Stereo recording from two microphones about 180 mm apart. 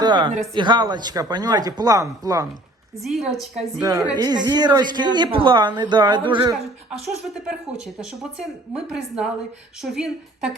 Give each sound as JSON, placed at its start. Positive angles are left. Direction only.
{"t": 0.0, "sound": "speech", "side_deg": -25}
{"t": 3.0, "sound": "speech", "side_deg": 0}
{"t": 4.1, "sound": "speech", "side_deg": -25}
{"t": 7.1, "sound": "speech", "side_deg": -5}